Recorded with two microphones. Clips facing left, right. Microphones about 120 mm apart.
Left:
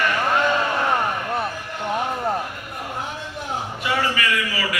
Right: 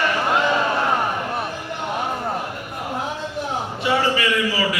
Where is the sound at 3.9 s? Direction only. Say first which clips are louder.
Right 3 dB; 25° right (ahead or behind).